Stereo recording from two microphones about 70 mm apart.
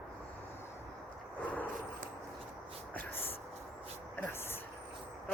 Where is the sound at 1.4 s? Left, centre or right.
Left.